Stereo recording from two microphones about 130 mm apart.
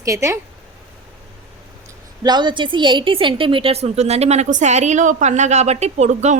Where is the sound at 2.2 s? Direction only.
35° right (ahead or behind).